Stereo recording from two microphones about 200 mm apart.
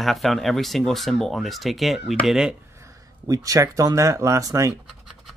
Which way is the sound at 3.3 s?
15° right (ahead or behind).